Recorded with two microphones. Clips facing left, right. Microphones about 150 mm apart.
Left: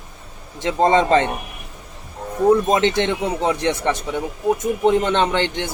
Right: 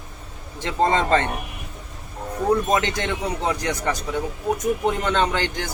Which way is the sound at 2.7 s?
25° left (ahead or behind).